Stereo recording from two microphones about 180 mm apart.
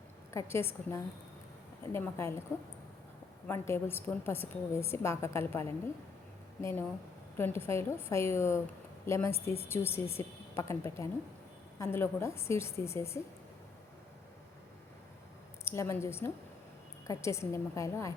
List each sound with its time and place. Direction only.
0.3 s a woman's voice: 15° left (ahead or behind)
3.4 s a woman's voice: 10° left (ahead or behind)
15.6 s a woman's voice: 15° left (ahead or behind)